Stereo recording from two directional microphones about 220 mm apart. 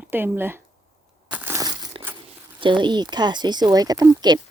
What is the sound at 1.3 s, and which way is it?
Crushing, 10° right (ahead or behind).